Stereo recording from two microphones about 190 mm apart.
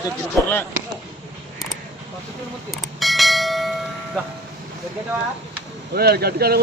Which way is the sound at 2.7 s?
Centre (ahead or behind).